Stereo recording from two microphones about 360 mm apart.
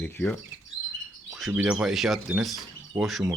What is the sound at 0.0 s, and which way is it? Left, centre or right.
Speech, centre.